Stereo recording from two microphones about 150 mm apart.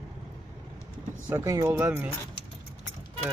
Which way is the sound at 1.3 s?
20° right (ahead or behind).